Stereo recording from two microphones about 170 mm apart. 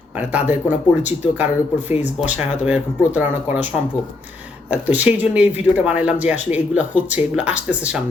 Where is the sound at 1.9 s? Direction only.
40° left (ahead or behind).